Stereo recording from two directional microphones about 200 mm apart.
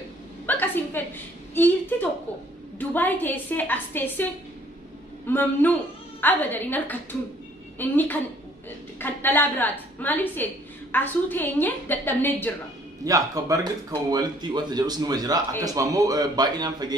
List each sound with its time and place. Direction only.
0.5 s a sound: 10° left (ahead or behind)
2.8 s a woman's voice: 10° left (ahead or behind)
13.0 s a man's voice: 15° right (ahead or behind)